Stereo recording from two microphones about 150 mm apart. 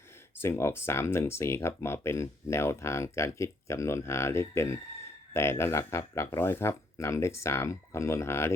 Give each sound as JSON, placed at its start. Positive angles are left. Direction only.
{"t": 0.3, "sound": "speech", "side_deg": 15}